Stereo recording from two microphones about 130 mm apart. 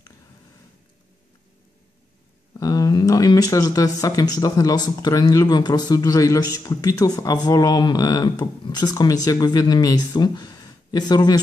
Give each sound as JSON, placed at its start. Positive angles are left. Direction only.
{"t": 2.5, "sound": "speech", "side_deg": 25}